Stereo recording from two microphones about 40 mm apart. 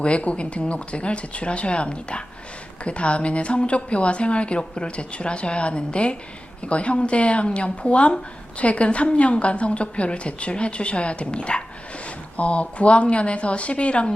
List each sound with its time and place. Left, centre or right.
0.0 s speech: left